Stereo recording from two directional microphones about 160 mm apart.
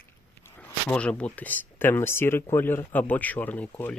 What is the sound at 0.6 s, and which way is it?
Speech, 10° left (ahead or behind).